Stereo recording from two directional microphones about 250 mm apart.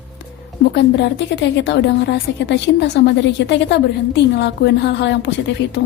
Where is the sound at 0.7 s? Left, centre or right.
Left.